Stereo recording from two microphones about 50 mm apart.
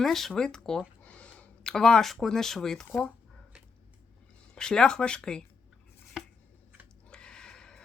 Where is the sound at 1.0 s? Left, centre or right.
Left.